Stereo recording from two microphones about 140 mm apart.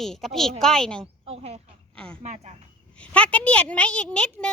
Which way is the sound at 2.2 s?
55° right (ahead or behind).